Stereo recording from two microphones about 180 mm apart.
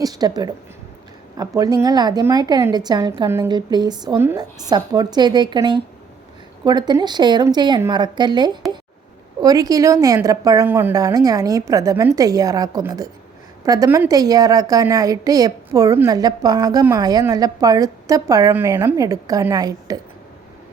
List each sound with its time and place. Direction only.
0.0 s a woman's voice: 20° right (ahead or behind)